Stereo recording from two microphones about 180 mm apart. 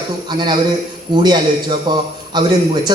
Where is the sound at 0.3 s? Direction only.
25° right (ahead or behind).